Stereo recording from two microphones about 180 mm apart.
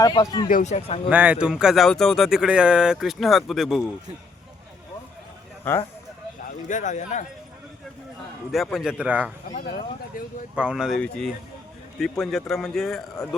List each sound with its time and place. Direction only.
0.0 s a man's voice: 20° left (ahead or behind)
0.4 s a man's voice: 45° left (ahead or behind)
1.1 s speech: 5° right (ahead or behind)
6.7 s speech: 45° left (ahead or behind)
8.5 s speech: centre (ahead or behind)
10.5 s speech: 5° right (ahead or behind)